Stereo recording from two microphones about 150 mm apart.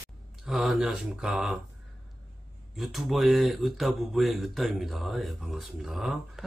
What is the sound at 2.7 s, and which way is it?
Speech, centre (ahead or behind).